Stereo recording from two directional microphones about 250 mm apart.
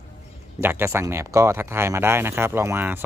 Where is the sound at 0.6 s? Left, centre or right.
Centre.